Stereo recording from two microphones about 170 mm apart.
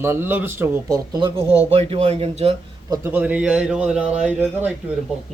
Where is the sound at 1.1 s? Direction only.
25° right (ahead or behind).